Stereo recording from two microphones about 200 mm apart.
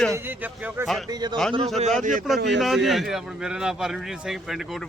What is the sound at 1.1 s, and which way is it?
Speech, 20° right (ahead or behind).